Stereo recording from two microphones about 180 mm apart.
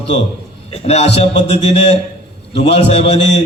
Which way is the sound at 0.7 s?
35° left (ahead or behind).